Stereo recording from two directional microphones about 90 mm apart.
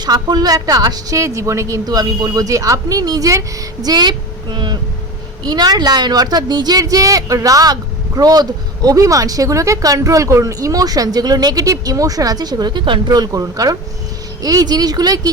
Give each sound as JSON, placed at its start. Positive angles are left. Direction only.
{"t": 0.0, "sound": "a woman's voice", "side_deg": -50}
{"t": 13.1, "sound": "a woman's voice", "side_deg": -45}